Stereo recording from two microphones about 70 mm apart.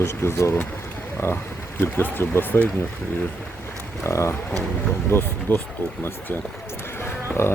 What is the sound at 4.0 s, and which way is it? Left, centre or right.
Speech, left.